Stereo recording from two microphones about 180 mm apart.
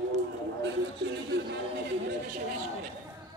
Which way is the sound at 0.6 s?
80° right.